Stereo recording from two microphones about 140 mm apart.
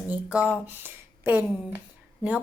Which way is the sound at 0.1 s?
10° right (ahead or behind).